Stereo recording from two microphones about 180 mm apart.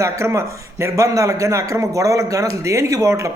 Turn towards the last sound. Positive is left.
turn(degrees=-15)  # may be behind; listen again after turning